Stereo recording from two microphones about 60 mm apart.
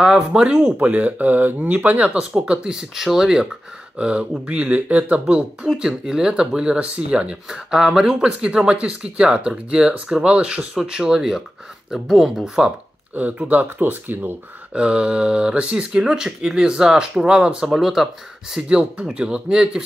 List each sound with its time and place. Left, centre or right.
0.0 s speech: centre
5.8 s speech: centre
13.3 s speech: right
14.7 s speech: centre
18.7 s speech: centre